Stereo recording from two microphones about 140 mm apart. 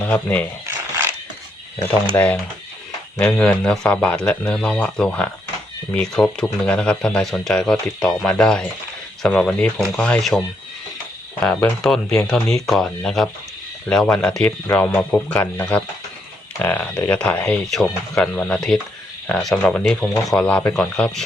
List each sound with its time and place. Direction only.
0.0 s speech: 10° left (ahead or behind)
0.7 s a sound: 15° right (ahead or behind)
2.1 s speech: 15° left (ahead or behind)